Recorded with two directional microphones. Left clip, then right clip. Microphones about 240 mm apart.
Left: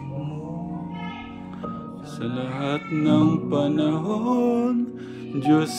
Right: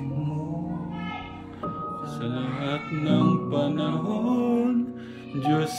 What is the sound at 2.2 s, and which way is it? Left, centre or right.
Music, left.